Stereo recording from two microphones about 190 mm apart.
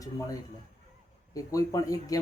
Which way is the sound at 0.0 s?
20° left (ahead or behind).